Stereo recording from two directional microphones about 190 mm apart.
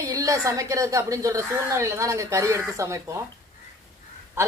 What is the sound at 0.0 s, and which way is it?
A woman's voice, 15° right (ahead or behind).